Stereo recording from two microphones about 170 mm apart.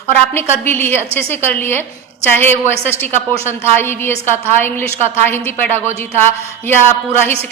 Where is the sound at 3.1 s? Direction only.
40° right (ahead or behind).